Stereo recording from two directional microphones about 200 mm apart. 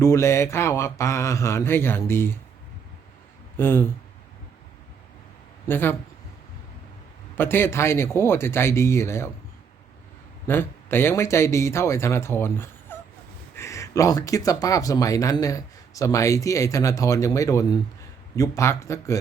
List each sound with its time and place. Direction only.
0.0 s speech: 15° left (ahead or behind)
3.6 s speech: 10° left (ahead or behind)
5.6 s speech: 10° left (ahead or behind)
7.3 s speech: 10° left (ahead or behind)
10.4 s speech: 10° left (ahead or behind)